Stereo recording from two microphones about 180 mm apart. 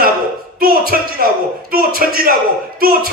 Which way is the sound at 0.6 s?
55° right (ahead or behind).